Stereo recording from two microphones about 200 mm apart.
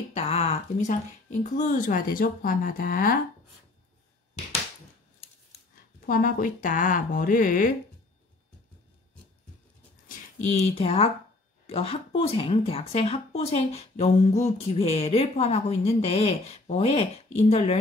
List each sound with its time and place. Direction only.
0.1 s speech: 30° left (ahead or behind)
6.0 s speech: 45° left (ahead or behind)
10.0 s speech: 35° left (ahead or behind)